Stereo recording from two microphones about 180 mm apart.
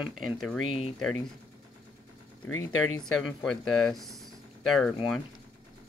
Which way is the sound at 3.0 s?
Centre (ahead or behind).